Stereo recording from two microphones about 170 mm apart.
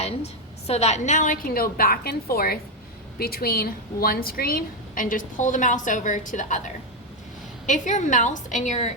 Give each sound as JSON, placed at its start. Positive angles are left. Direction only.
{"t": 0.0, "sound": "a woman's voice", "side_deg": 40}
{"t": 7.7, "sound": "a woman's voice", "side_deg": 45}